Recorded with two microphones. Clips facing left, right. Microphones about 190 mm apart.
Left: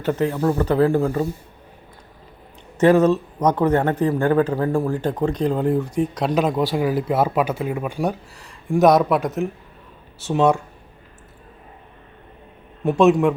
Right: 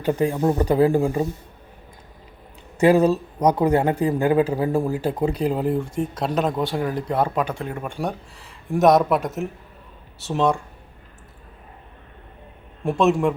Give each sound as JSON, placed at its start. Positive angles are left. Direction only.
{"t": 0.0, "sound": "speech", "side_deg": -15}
{"t": 2.7, "sound": "speech", "side_deg": -10}
{"t": 12.8, "sound": "speech", "side_deg": 0}